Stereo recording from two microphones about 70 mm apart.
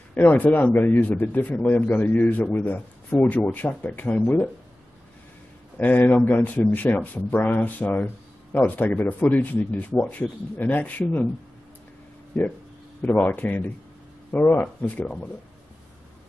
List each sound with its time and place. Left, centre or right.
0.1 s speech: left
5.8 s speech: left
13.0 s speech: left